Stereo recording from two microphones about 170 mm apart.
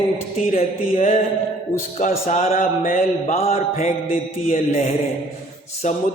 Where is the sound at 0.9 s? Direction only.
45° left (ahead or behind).